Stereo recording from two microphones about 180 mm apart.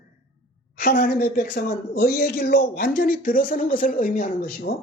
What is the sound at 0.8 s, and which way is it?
A woman's voice, 55° left (ahead or behind).